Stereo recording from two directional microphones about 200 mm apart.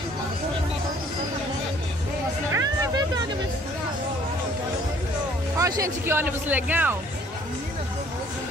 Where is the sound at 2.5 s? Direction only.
15° right (ahead or behind).